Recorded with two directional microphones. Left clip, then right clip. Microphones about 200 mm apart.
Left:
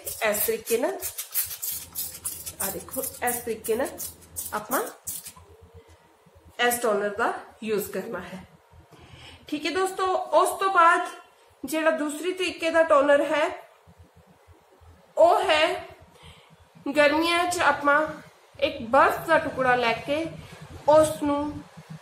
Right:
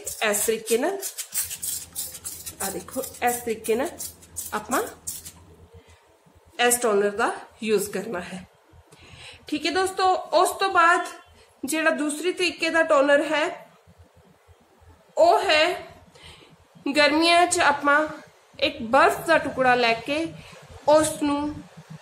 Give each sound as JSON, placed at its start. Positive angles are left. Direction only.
{"t": 0.2, "sound": "a woman's voice", "side_deg": -40}
{"t": 3.3, "sound": "a woman's voice", "side_deg": -35}
{"t": 6.5, "sound": "a woman's voice", "side_deg": -45}
{"t": 9.5, "sound": "a woman's voice", "side_deg": -40}
{"t": 15.1, "sound": "a woman's voice", "side_deg": -35}
{"t": 16.8, "sound": "a woman's voice", "side_deg": -40}